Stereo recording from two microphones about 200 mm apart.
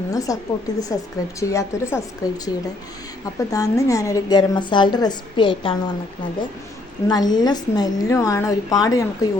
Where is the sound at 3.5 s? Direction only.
15° left (ahead or behind).